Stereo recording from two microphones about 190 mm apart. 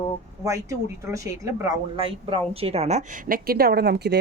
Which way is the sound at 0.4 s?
15° right (ahead or behind).